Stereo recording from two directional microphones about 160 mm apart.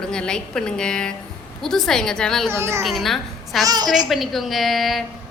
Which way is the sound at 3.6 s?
25° right (ahead or behind).